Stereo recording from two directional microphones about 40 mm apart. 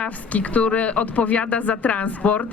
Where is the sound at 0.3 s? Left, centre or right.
Left.